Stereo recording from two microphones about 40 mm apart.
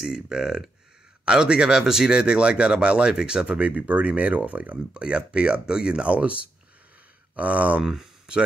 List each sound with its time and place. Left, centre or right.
0.0 s speech: centre
3.4 s speech: right
4.9 s speech: right
7.8 s speech: centre